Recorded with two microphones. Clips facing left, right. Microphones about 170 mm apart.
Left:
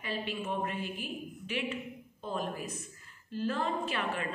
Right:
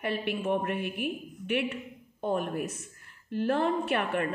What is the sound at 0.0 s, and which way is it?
A woman's voice, 65° right (ahead or behind).